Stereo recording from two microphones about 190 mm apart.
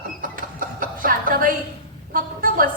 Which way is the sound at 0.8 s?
50° right (ahead or behind).